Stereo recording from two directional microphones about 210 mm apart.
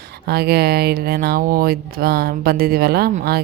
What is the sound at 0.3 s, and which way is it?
Speech, 50° right (ahead or behind).